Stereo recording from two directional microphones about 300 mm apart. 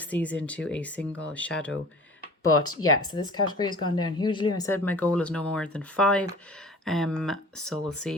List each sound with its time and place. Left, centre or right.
0.1 s speech: centre
2.4 s speech: left
3.6 s speech: centre